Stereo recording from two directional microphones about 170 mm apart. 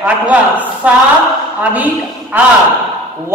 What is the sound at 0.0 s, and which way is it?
Speech, 10° right (ahead or behind).